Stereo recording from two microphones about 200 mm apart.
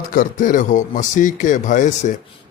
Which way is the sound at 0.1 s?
45° left (ahead or behind).